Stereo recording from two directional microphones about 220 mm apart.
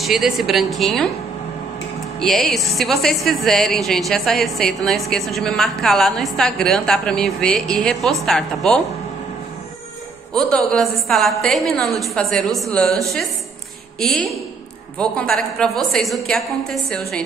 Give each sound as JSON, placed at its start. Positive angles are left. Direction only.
{"t": 0.0, "sound": "a woman's voice", "side_deg": 0}
{"t": 2.1, "sound": "a woman's voice", "side_deg": 0}
{"t": 10.3, "sound": "a woman's voice", "side_deg": 5}